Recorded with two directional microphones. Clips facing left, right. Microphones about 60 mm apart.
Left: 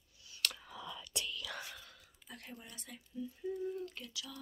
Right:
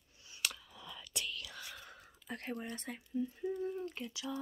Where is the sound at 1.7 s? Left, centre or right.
Centre.